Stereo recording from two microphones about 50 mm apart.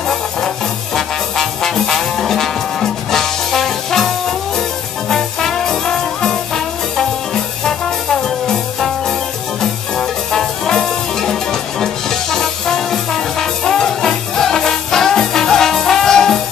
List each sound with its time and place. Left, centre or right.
0.9 s music: centre